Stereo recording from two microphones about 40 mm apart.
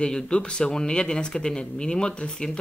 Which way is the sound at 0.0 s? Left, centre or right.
Left.